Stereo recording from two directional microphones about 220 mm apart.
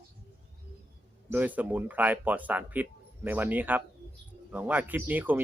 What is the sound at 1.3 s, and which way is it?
Speech, 5° right (ahead or behind).